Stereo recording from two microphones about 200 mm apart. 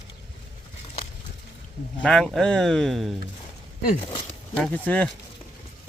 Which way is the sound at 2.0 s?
5° left (ahead or behind).